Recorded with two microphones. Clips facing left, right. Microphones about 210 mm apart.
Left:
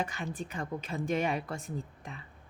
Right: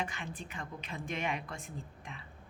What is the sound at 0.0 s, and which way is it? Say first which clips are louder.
A woman's voice: left 4 dB; 40° left (ahead or behind).